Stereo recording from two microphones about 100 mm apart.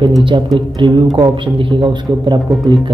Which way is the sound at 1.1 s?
55° right (ahead or behind).